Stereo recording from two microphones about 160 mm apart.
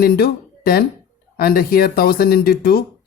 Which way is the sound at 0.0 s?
70° left (ahead or behind).